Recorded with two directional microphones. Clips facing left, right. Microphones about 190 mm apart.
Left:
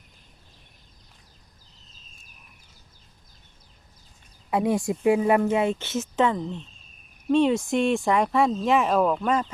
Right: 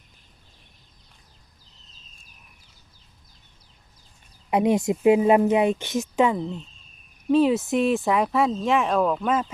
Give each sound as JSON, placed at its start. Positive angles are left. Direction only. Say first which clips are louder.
{"t": 4.5, "sound": "speech", "louder": "right 3 dB", "side_deg": -20}